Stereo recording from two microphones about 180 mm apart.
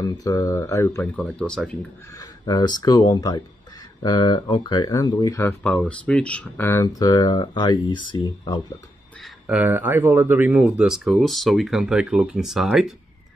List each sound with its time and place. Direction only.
0.1 s speech: 20° left (ahead or behind)
1.0 s speech: 5° left (ahead or behind)
2.1 s speech: 20° left (ahead or behind)
9.2 s speech: 5° right (ahead or behind)